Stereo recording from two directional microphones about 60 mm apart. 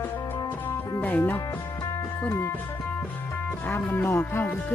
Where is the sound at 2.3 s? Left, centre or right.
Left.